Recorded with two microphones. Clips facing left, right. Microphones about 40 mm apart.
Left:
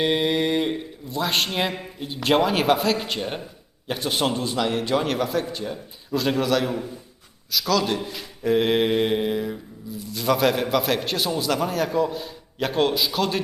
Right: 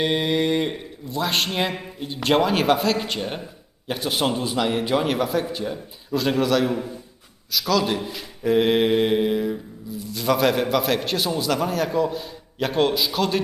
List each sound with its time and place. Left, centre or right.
0.0 s mantra: centre